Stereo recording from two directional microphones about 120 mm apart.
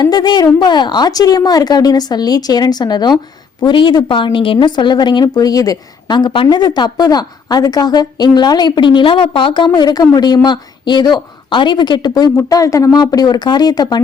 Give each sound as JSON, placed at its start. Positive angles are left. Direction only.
{"t": 0.0, "sound": "a woman's voice", "side_deg": 35}